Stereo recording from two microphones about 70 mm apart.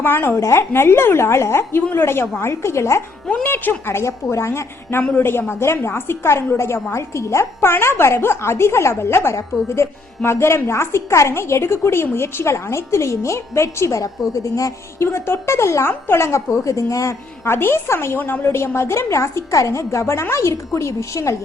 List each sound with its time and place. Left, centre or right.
0.0 s a woman's voice: left
0.3 s a woman's voice: left
3.4 s a woman's voice: left
16.6 s speech: left
17.4 s a woman's voice: left